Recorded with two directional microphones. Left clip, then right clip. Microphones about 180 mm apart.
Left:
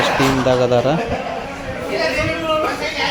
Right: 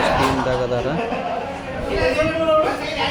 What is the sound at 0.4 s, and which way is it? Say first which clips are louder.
Speech: left 6 dB; 25° left (ahead or behind).